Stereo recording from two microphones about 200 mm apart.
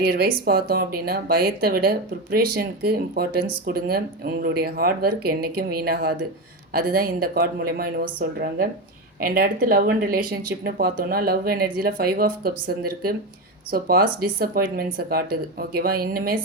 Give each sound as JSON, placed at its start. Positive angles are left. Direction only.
{"t": 0.1, "sound": "speech", "side_deg": -50}